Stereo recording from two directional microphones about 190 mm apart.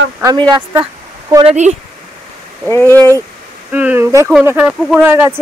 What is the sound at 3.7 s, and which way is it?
Speech, 10° right (ahead or behind).